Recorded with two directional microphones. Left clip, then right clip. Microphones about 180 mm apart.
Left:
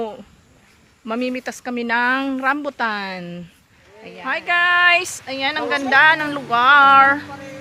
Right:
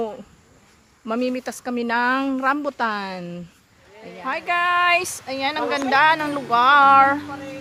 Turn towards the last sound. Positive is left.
turn(degrees=-5)  # may be behind; listen again after turning